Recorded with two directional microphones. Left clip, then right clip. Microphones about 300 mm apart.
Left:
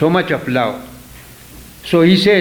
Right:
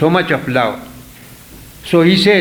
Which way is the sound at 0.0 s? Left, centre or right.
Left.